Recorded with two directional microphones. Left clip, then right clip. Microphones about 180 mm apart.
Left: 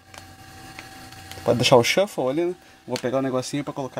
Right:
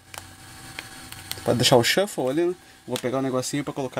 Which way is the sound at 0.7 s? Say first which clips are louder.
Right 3 dB; 15° right (ahead or behind).